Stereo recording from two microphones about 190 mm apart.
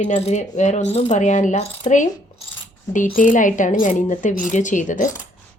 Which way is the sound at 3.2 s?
45° left (ahead or behind).